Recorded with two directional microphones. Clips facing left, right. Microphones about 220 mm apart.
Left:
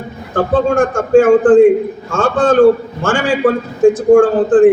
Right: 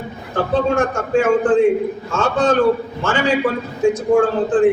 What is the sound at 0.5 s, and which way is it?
A man's voice, 50° left (ahead or behind).